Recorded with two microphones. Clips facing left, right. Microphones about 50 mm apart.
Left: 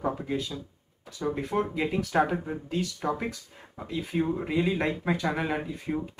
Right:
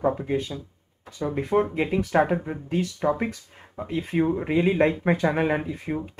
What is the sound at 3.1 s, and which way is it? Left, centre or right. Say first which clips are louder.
Speech: right 6 dB; right.